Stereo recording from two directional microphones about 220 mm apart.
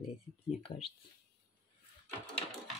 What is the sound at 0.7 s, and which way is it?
Speech, 40° left (ahead or behind).